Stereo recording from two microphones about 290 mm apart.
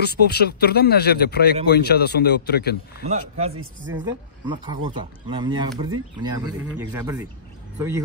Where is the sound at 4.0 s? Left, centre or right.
Centre.